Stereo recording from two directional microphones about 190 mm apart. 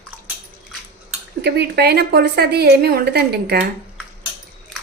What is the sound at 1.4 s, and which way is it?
A woman's voice, 60° right (ahead or behind).